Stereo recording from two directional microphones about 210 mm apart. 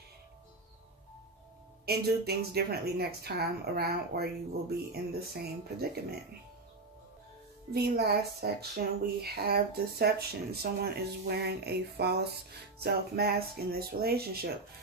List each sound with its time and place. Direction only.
1.9 s speech: 50° right (ahead or behind)
7.7 s speech: 50° right (ahead or behind)